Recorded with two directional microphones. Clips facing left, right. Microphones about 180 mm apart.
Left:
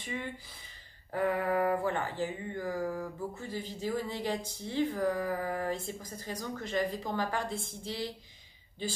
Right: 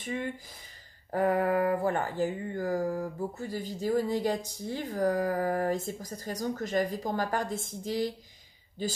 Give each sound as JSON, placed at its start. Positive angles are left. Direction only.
{"t": 1.1, "sound": "speech", "side_deg": -40}